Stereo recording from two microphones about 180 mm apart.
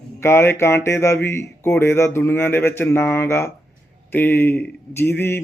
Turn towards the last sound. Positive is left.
turn(degrees=10)  # may be behind; listen again after turning